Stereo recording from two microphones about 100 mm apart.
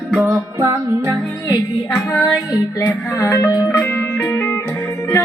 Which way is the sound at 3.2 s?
35° left (ahead or behind).